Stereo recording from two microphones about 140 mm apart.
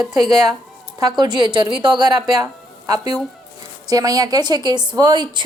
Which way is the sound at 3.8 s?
25° right (ahead or behind).